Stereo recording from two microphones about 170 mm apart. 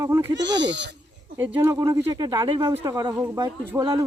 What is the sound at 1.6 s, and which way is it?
Speech, 20° right (ahead or behind).